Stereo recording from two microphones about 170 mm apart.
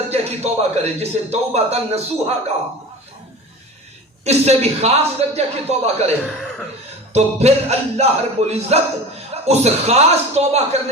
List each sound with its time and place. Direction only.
0.1 s a man's voice: 40° right (ahead or behind)
4.2 s a man's voice: 40° right (ahead or behind)
7.1 s a man's voice: 40° right (ahead or behind)